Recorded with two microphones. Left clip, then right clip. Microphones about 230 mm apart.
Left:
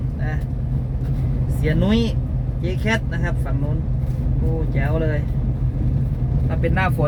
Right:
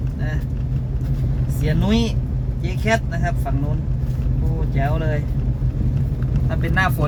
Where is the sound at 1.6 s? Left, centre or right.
Centre.